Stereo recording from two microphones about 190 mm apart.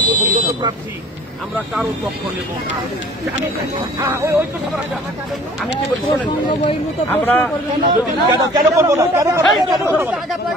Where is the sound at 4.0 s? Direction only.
15° right (ahead or behind).